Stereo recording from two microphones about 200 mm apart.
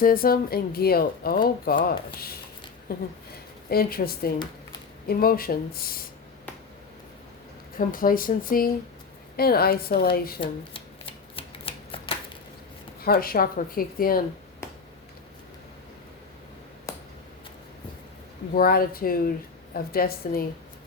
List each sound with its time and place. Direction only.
0.0 s speech: 45° left (ahead or behind)
2.9 s speech: 50° left (ahead or behind)
7.8 s speech: 45° left (ahead or behind)
10.4 s shuffling cards: 25° left (ahead or behind)
13.0 s speech: 50° left (ahead or behind)
18.5 s speech: 45° left (ahead or behind)